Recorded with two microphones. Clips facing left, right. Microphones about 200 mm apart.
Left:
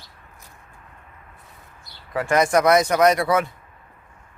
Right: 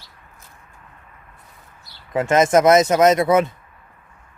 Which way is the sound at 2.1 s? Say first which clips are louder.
Right 3 dB; 20° right (ahead or behind).